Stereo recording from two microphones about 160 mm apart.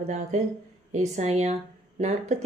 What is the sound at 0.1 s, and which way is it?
A woman's voice, 45° right (ahead or behind).